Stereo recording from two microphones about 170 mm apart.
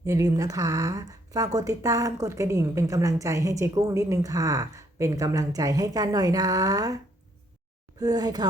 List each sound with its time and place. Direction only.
0.0 s speech: 20° right (ahead or behind)